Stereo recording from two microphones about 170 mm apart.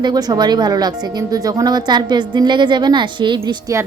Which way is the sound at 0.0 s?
25° right (ahead or behind).